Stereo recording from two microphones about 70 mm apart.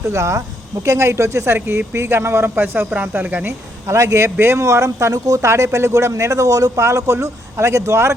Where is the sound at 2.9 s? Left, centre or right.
Right.